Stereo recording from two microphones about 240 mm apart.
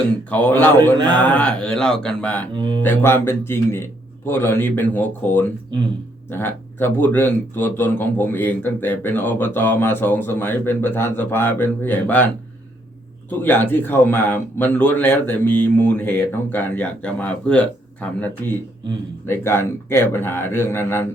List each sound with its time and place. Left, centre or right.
0.3 s speech: centre
0.9 s speech: centre
1.2 s speech: centre
2.5 s speech: centre
2.8 s speech: centre
13.4 s speech: centre